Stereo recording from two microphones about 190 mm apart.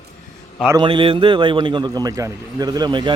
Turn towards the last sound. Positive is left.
turn(degrees=-25)  # may be behind; listen again after turning